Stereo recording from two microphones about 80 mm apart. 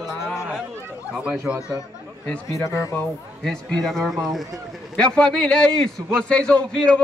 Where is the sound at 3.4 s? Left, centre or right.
Centre.